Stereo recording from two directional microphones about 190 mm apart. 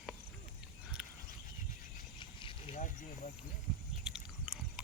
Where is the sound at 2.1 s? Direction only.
25° left (ahead or behind).